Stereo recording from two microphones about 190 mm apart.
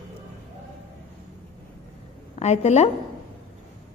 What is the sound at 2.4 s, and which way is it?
Speech, 35° left (ahead or behind).